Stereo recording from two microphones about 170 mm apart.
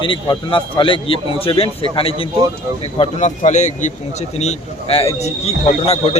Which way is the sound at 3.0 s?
45° left (ahead or behind).